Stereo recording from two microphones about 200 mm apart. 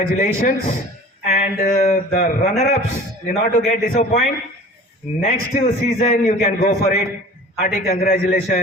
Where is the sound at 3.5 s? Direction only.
40° left (ahead or behind).